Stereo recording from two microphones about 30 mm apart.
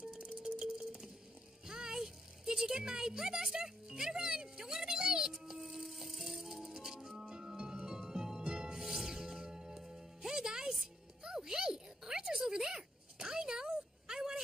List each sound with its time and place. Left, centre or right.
0.4 s music: right
2.0 s a sound: centre
2.7 s speech: right
3.5 s music: centre
8.8 s music: centre
11.2 s a sound: right